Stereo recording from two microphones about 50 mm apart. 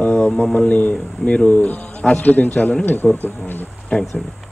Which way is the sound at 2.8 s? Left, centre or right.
Left.